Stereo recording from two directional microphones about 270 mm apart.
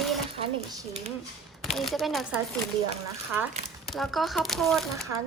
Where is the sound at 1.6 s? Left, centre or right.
Centre.